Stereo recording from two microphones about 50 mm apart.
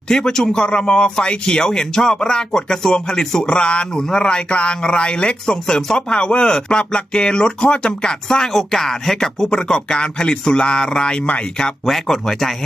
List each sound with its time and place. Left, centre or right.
0.1 s a man's voice: centre